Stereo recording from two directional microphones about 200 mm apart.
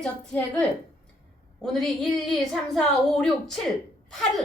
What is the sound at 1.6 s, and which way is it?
A woman's voice, centre (ahead or behind).